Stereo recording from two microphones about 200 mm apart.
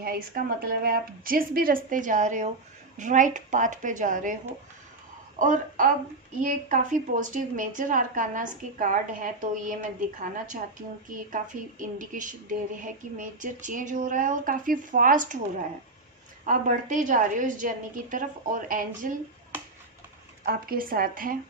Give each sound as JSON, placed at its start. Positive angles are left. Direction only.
{"t": 0.0, "sound": "a woman's voice", "side_deg": -50}
{"t": 5.4, "sound": "a woman's voice", "side_deg": -40}
{"t": 16.5, "sound": "a woman's voice", "side_deg": -40}
{"t": 20.4, "sound": "a woman's voice", "side_deg": -50}